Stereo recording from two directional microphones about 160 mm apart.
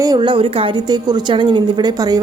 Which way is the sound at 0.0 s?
25° right (ahead or behind).